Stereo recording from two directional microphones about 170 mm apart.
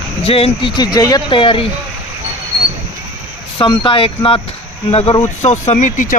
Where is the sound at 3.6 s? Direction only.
30° left (ahead or behind).